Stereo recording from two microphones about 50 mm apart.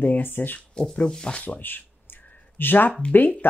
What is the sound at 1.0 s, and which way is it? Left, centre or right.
Speech, centre.